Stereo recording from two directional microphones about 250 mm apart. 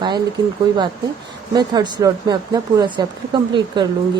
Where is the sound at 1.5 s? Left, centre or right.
Centre.